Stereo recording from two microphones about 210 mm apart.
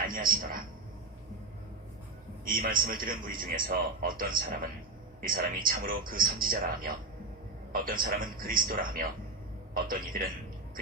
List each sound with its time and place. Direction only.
0.1 s a man's voice: 40° right (ahead or behind)
2.4 s a man's voice: 40° right (ahead or behind)